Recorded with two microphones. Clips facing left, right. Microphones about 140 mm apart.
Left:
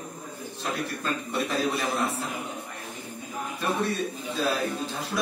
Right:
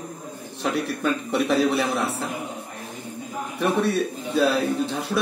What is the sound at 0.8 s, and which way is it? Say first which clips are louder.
A man's voice: right 6 dB; 70° right (ahead or behind).